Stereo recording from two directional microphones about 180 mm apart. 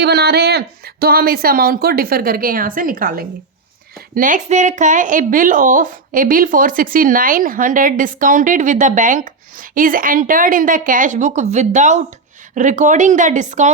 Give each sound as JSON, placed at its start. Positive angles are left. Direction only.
{"t": 0.0, "sound": "speech", "side_deg": -65}